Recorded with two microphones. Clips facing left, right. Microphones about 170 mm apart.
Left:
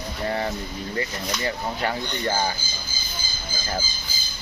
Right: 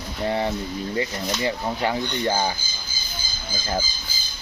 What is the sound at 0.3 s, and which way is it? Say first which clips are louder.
Speech: right 3 dB; 15° right (ahead or behind).